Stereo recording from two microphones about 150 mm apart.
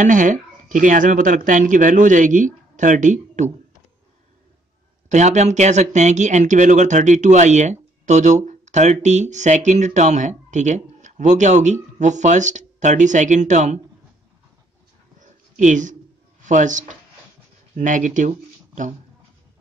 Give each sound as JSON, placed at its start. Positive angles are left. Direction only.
{"t": 0.0, "sound": "speech", "side_deg": -55}
{"t": 5.1, "sound": "speech", "side_deg": -50}
{"t": 15.1, "sound": "a sound", "side_deg": -55}
{"t": 16.4, "sound": "speech", "side_deg": -55}